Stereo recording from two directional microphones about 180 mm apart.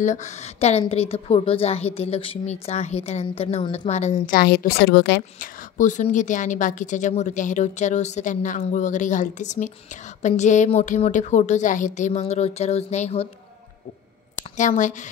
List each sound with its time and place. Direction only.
0.0 s a woman's voice: 40° left (ahead or behind)
3.9 s a woman's voice: 40° left (ahead or behind)
4.4 s a woman's voice: 60° left (ahead or behind)
5.4 s a woman's voice: 45° left (ahead or behind)
14.6 s a woman's voice: 45° left (ahead or behind)